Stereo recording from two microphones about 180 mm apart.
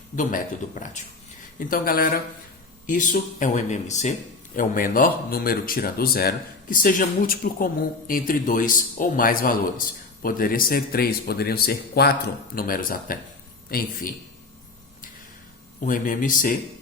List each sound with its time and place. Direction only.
0.2 s speech: 45° left (ahead or behind)
15.8 s speech: 50° left (ahead or behind)